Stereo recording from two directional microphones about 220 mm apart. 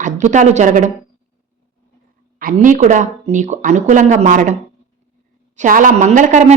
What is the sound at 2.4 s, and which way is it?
A woman's voice, 40° right (ahead or behind).